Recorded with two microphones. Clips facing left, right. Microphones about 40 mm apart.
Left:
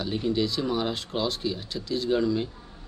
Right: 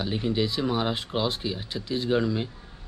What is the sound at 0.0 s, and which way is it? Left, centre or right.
Speech, centre.